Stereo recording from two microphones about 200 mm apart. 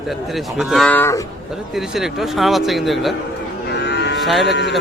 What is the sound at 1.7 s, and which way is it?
A man's voice, centre (ahead or behind).